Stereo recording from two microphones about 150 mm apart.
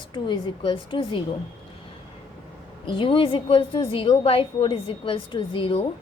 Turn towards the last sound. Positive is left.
turn(degrees=35)  # may be behind; listen again after turning